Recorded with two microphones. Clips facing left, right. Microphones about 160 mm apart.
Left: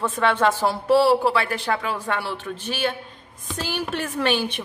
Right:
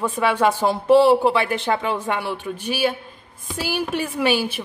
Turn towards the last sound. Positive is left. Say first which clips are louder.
# right 2 dB
turn(degrees=-5)  # may be behind; listen again after turning